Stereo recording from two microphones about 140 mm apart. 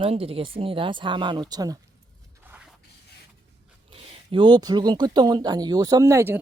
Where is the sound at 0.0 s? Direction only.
45° right (ahead or behind); by 1.8 s 25° right (ahead or behind).